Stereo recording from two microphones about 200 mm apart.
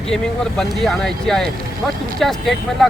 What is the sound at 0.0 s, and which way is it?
Speech, 5° left (ahead or behind).